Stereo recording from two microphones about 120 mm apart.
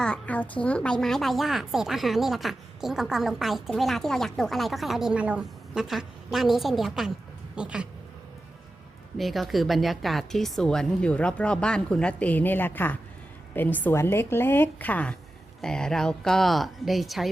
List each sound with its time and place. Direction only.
0.0 s a woman's voice: 10° left (ahead or behind); by 7.9 s 10° right (ahead or behind)
9.1 s a woman's voice: centre (ahead or behind)